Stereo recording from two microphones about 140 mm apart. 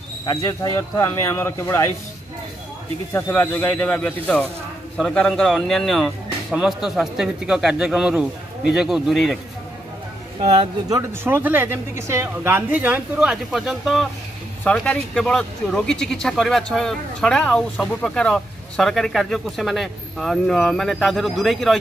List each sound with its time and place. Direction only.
0.2 s speech: 25° left (ahead or behind)
3.1 s speech: 15° left (ahead or behind); by 9.4 s centre (ahead or behind)
10.4 s speech: 45° right (ahead or behind)
10.9 s speech: 20° right (ahead or behind); by 21.7 s centre (ahead or behind)